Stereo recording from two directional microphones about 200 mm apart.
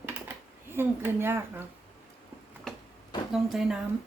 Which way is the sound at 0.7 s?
10° right (ahead or behind).